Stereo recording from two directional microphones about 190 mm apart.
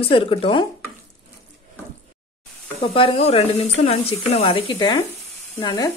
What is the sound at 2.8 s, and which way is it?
Speech, 30° left (ahead or behind).